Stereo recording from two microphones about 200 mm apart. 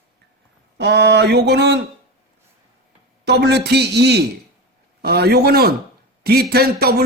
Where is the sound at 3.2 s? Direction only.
55° right (ahead or behind).